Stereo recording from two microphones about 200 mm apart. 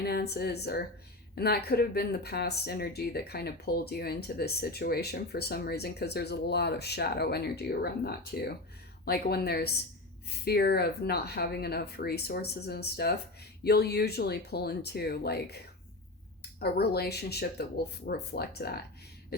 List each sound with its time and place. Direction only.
0.0 s speech: 50° left (ahead or behind)